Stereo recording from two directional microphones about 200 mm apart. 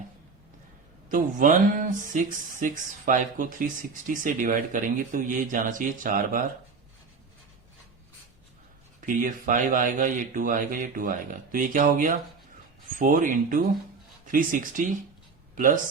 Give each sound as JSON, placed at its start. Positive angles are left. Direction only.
{"t": 1.1, "sound": "speech", "side_deg": -40}
{"t": 9.0, "sound": "speech", "side_deg": -40}